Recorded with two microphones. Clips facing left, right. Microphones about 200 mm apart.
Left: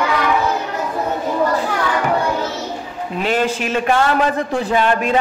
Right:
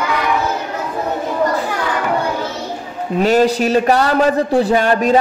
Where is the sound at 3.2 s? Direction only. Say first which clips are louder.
Right 6 dB; 40° right (ahead or behind).